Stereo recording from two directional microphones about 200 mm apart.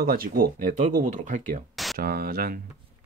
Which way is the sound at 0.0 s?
50° right (ahead or behind).